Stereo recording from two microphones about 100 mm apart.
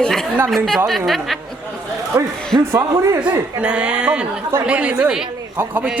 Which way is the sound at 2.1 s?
30° right (ahead or behind).